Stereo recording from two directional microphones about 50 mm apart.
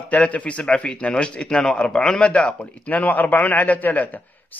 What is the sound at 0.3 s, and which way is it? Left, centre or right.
A man's voice, left.